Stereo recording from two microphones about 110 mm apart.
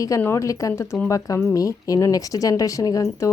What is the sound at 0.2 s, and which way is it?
Speech, 25° left (ahead or behind).